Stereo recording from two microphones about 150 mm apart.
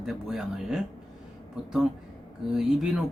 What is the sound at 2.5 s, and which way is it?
Speech, 5° right (ahead or behind).